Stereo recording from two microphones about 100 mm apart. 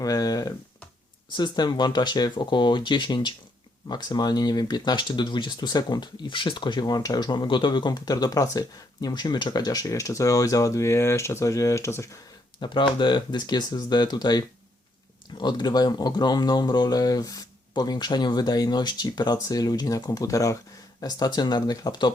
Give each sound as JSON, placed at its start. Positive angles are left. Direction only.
{"t": 0.0, "sound": "speech", "side_deg": 35}
{"t": 12.5, "sound": "speech", "side_deg": 55}